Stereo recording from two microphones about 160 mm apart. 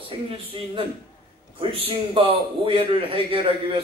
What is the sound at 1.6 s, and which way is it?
A man's voice, 35° right (ahead or behind).